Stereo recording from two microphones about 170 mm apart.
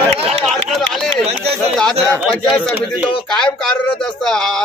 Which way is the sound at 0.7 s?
Centre (ahead or behind).